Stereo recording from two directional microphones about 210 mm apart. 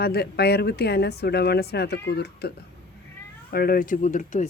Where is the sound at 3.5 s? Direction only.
45° left (ahead or behind).